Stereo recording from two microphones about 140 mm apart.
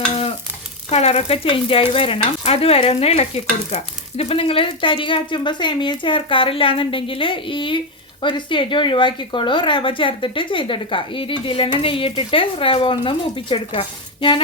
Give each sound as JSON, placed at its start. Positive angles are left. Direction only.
{"t": 0.9, "sound": "speech", "side_deg": 50}